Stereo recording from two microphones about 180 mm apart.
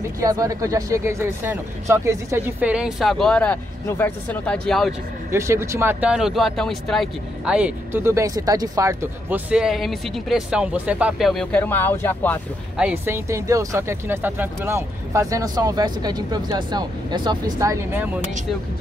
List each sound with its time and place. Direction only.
0.2 s speech: 20° right (ahead or behind); by 4.9 s centre (ahead or behind)
5.3 s speech: 15° right (ahead or behind); by 12.4 s 10° left (ahead or behind)
12.7 s speech: 10° right (ahead or behind)